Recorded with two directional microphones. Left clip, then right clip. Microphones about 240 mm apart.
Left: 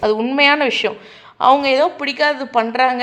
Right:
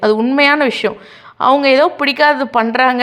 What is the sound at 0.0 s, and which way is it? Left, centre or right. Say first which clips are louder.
A woman's voice: right 2 dB; right.